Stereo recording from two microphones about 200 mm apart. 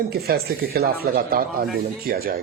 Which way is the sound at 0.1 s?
50° right (ahead or behind).